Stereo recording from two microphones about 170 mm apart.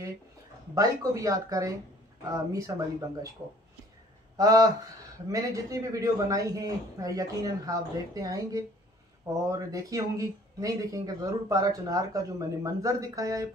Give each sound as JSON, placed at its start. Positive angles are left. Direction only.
{"t": 0.7, "sound": "speech", "side_deg": -20}
{"t": 4.4, "sound": "speech", "side_deg": -20}